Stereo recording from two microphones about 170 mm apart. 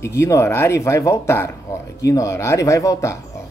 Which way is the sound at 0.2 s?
15° left (ahead or behind).